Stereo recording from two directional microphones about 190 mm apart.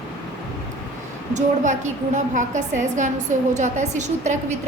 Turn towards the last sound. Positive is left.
turn(degrees=-40)  # may be behind; listen again after turning